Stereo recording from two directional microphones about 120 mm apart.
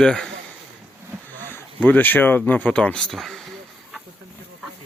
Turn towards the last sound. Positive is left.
turn(degrees=0)  # may be behind; listen again after turning